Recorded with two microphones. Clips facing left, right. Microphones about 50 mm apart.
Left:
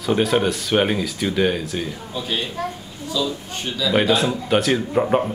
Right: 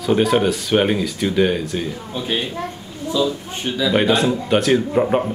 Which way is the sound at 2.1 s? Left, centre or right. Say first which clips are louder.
Right 2 dB; right.